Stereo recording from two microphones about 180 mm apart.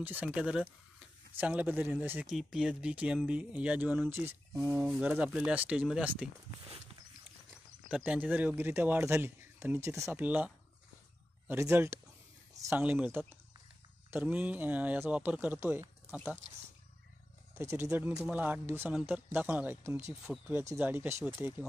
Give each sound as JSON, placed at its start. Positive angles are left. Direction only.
{"t": 0.0, "sound": "speech", "side_deg": -10}
{"t": 7.9, "sound": "speech", "side_deg": -10}
{"t": 17.6, "sound": "speech", "side_deg": -15}